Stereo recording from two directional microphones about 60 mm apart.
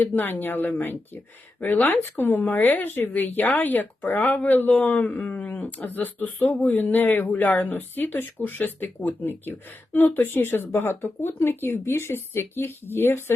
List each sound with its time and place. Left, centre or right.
0.0 s speech: left